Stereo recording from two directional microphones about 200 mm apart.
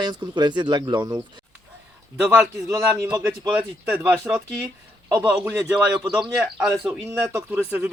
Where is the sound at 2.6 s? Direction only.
15° right (ahead or behind).